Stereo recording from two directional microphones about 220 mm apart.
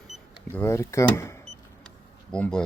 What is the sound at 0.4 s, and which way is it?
Speech, 10° left (ahead or behind).